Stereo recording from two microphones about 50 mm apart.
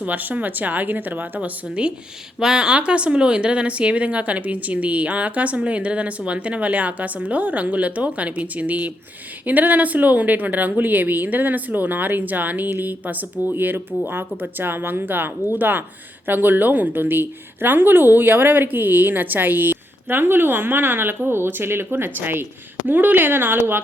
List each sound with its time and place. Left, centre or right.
0.0 s a woman's voice: right
1.4 s a woman's voice: right